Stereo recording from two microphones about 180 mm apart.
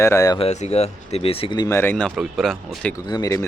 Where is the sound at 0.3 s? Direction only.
35° left (ahead or behind); by 2.9 s centre (ahead or behind).